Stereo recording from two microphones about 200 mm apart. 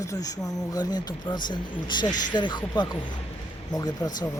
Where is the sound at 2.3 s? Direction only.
20° left (ahead or behind).